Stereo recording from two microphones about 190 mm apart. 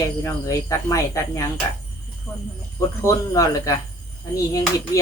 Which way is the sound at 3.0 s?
15° left (ahead or behind).